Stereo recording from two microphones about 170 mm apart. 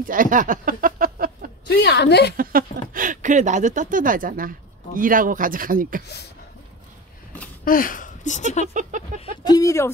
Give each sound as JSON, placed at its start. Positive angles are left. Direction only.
{"t": 0.0, "sound": "a sound", "side_deg": -50}
{"t": 1.7, "sound": "a woman's voice", "side_deg": 80}
{"t": 2.3, "sound": "speech", "side_deg": -60}
{"t": 7.6, "sound": "speech", "side_deg": 55}
{"t": 8.9, "sound": "chicken", "side_deg": -45}
{"t": 9.4, "sound": "speech", "side_deg": 20}